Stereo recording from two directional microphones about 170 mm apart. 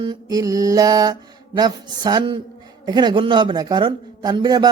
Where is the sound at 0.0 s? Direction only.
25° right (ahead or behind).